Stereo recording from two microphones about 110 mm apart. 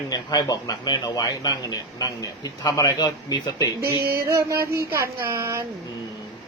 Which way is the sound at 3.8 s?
25° right (ahead or behind).